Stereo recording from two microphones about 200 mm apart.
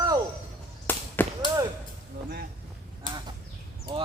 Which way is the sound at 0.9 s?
10° left (ahead or behind).